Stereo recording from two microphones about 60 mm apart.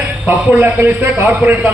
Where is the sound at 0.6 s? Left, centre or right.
Right.